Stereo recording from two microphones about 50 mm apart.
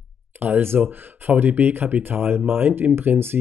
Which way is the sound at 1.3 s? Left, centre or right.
Right.